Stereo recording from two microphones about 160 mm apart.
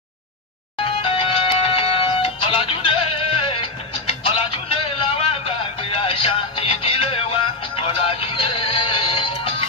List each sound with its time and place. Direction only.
0.7 s music: 35° left (ahead or behind)